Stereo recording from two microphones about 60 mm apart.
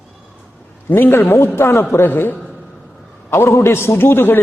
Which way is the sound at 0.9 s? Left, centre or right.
Left.